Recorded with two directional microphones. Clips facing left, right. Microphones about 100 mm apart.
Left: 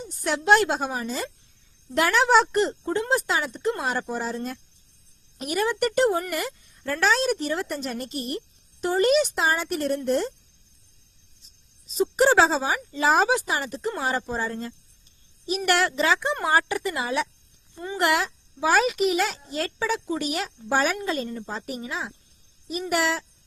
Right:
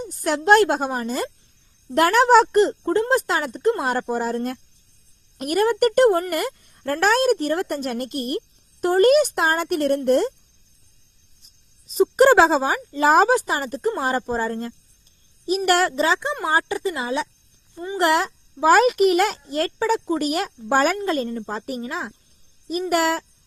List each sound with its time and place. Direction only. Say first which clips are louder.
0.0 s a child's voice: right 4 dB; 45° right (ahead or behind)
11.4 s a child's voice: even; 50° right (ahead or behind)
16.5 s speech: right 2 dB; 25° right (ahead or behind)
17.9 s a child's voice: right 4 dB; 40° right (ahead or behind)